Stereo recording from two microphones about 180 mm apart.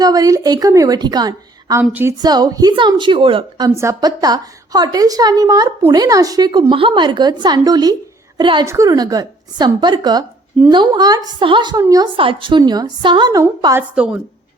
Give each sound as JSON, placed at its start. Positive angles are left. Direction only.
{"t": 0.0, "sound": "a woman's voice", "side_deg": -20}
{"t": 1.8, "sound": "a woman's voice", "side_deg": -10}
{"t": 2.1, "sound": "a woman's voice", "side_deg": -20}
{"t": 3.8, "sound": "a woman's voice", "side_deg": -20}
{"t": 13.9, "sound": "a woman's voice", "side_deg": -5}